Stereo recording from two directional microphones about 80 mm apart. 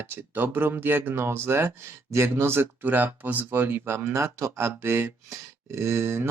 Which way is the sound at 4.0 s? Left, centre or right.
Right.